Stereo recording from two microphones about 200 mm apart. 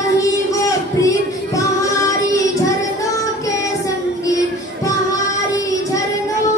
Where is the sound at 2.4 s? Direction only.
15° left (ahead or behind).